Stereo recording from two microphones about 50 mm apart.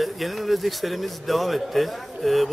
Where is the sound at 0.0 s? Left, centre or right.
Centre.